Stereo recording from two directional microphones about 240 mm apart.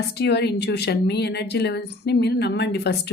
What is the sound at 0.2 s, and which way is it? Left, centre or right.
Speech, left.